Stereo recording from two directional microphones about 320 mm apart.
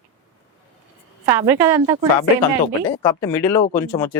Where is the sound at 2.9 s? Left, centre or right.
Centre.